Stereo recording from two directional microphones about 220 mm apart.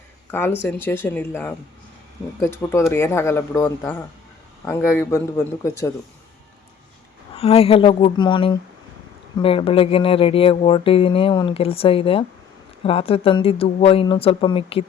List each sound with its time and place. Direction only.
0.3 s a man's voice: 10° left (ahead or behind)
7.3 s speech: 25° left (ahead or behind)